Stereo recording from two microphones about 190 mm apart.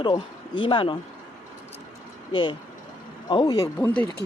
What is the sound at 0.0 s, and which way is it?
Speech, 25° left (ahead or behind).